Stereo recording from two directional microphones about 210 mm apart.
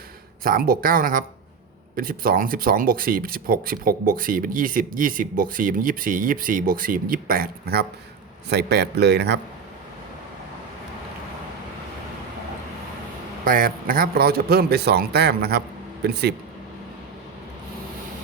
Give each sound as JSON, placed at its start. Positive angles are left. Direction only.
{"t": 0.4, "sound": "speech", "side_deg": -45}
{"t": 13.4, "sound": "speech", "side_deg": -40}